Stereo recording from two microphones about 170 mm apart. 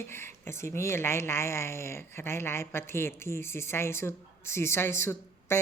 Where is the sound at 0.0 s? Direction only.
15° left (ahead or behind).